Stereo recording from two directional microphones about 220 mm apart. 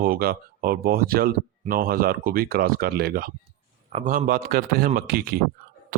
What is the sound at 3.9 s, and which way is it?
Speech, 25° right (ahead or behind).